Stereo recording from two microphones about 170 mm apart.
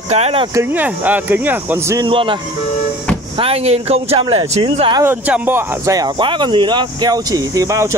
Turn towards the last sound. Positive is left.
turn(degrees=-20)  # may be behind; listen again after turning